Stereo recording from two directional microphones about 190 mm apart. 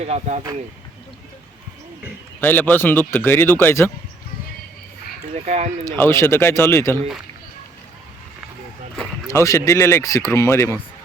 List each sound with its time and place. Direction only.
0.0 s speech: 35° right (ahead or behind)
2.4 s a man's voice: 10° left (ahead or behind)
5.3 s speech: 35° right (ahead or behind)
6.0 s a man's voice: 15° left (ahead or behind)
9.3 s a man's voice: 15° left (ahead or behind)